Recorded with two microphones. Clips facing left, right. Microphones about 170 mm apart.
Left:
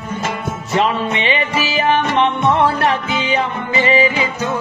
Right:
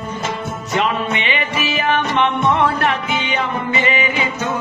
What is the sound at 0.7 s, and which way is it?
Music, 30° left (ahead or behind).